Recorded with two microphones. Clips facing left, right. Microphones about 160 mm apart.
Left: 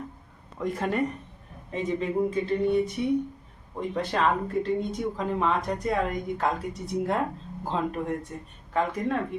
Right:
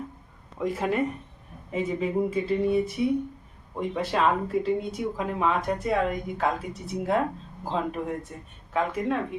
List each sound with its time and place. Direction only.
0.6 s speech: centre (ahead or behind)